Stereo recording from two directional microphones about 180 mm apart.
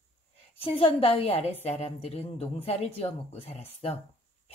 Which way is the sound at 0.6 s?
30° left (ahead or behind).